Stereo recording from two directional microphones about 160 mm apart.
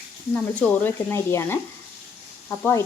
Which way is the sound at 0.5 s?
10° left (ahead or behind).